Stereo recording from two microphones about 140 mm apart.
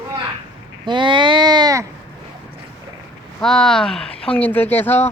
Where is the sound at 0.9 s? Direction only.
35° right (ahead or behind).